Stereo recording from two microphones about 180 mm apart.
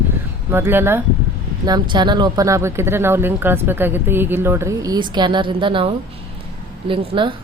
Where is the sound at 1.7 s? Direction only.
25° right (ahead or behind).